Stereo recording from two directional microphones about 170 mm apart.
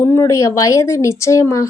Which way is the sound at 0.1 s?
15° left (ahead or behind).